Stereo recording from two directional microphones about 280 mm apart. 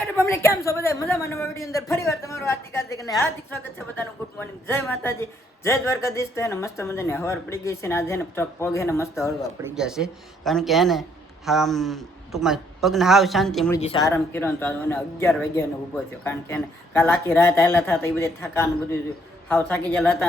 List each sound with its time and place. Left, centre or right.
0.0 s a woman's voice: centre
9.6 s a man's voice: centre
13.8 s speech: centre
14.1 s a woman's voice: centre